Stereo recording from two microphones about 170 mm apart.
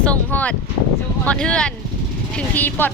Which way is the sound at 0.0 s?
10° left (ahead or behind).